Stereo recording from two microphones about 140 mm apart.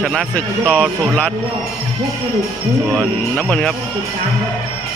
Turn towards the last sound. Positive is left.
turn(degrees=5)  # may be behind; listen again after turning